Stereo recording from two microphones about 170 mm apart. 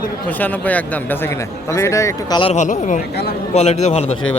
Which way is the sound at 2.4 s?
40° left (ahead or behind).